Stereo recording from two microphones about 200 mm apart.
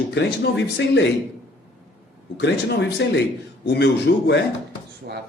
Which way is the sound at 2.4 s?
60° left (ahead or behind).